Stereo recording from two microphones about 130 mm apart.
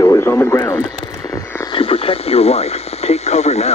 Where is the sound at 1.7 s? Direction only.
45° left (ahead or behind).